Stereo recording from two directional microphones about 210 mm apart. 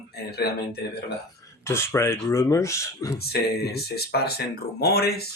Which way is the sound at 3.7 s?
50° left (ahead or behind).